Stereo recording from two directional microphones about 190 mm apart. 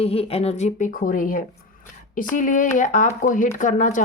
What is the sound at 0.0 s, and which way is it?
Speech, 30° left (ahead or behind).